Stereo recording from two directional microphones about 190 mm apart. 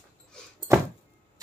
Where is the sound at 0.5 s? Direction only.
15° right (ahead or behind).